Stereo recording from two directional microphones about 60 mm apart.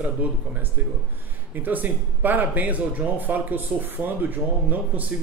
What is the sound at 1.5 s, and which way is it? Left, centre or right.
Speech, right.